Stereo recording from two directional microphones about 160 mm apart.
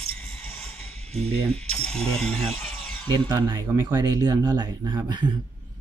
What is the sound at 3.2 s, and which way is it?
Speech, 25° right (ahead or behind).